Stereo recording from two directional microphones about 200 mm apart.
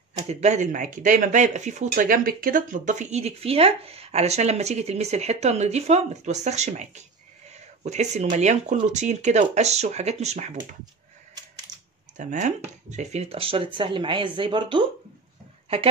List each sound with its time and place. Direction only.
0.1 s speech: 35° right (ahead or behind)
12.2 s speech: 40° right (ahead or behind)